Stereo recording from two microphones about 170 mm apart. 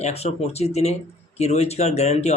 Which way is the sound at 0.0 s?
40° left (ahead or behind).